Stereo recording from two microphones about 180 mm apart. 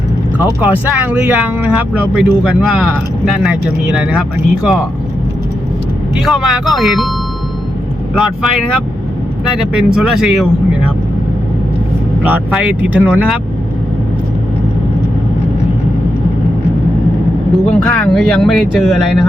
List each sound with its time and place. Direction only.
0.3 s speech: 10° right (ahead or behind)
6.2 s speech: 5° right (ahead or behind)
8.1 s speech: centre (ahead or behind)
12.2 s speech: 10° right (ahead or behind)
17.7 s speech: 5° left (ahead or behind)